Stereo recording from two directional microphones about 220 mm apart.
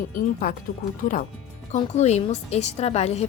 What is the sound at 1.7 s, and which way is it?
A woman's voice, 30° left (ahead or behind).